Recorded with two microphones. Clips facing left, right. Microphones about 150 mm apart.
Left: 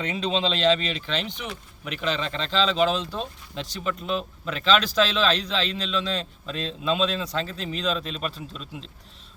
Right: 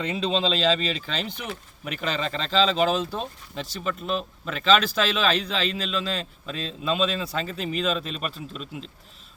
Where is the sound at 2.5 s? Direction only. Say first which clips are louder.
Right 2 dB; 40° right (ahead or behind).